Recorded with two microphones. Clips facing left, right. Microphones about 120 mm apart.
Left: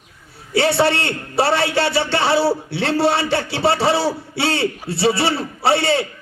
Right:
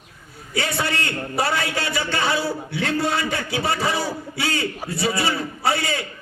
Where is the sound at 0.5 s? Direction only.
30° left (ahead or behind).